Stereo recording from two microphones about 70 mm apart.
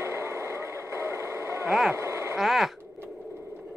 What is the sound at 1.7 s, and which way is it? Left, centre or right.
Speech, centre.